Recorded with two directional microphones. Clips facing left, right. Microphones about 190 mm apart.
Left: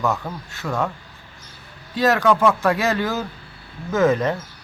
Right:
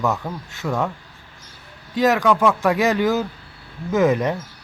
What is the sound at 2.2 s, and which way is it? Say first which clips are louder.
Speech: even; centre (ahead or behind).